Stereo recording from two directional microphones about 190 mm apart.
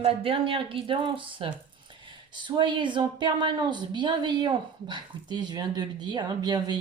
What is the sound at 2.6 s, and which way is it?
Speech, 25° right (ahead or behind).